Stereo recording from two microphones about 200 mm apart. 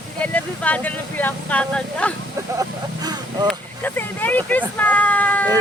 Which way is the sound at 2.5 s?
20° right (ahead or behind).